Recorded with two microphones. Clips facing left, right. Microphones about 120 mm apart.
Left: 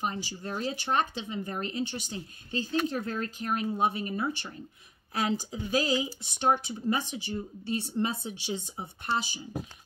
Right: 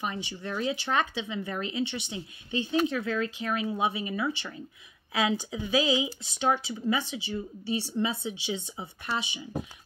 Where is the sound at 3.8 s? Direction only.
50° left (ahead or behind).